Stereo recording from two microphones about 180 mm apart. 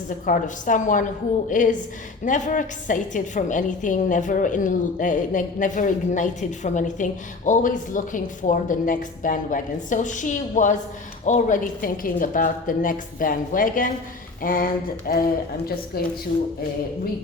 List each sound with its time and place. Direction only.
0.3 s a woman's voice: 45° left (ahead or behind)